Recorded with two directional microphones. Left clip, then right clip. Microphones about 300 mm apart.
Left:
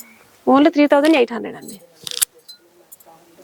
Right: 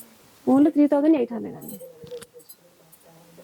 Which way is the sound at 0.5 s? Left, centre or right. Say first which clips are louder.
Left 6 dB; centre.